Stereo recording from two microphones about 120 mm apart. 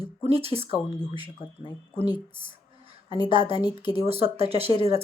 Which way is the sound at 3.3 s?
50° right (ahead or behind).